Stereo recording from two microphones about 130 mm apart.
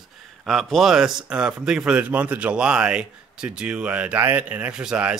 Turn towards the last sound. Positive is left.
turn(degrees=-5)  # may be behind; listen again after turning